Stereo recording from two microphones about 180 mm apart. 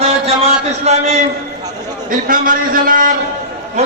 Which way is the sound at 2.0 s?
50° right (ahead or behind).